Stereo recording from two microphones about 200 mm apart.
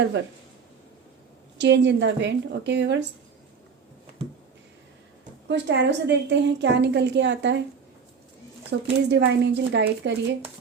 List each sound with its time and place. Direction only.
1.5 s a woman's voice: 60° right (ahead or behind)
5.5 s a woman's voice: 60° right (ahead or behind)
8.7 s a woman's voice: 65° right (ahead or behind)